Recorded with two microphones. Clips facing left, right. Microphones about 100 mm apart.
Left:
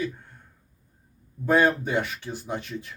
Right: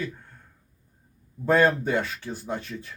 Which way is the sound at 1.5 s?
15° left (ahead or behind).